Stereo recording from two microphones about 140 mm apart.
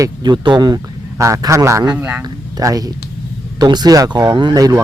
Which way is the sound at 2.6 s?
25° right (ahead or behind).